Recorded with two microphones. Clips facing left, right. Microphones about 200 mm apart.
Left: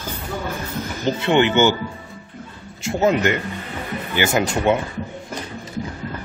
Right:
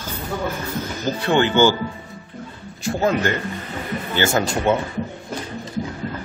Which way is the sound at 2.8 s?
20° left (ahead or behind).